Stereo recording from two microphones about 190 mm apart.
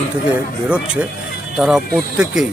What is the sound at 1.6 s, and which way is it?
Speech, 5° right (ahead or behind).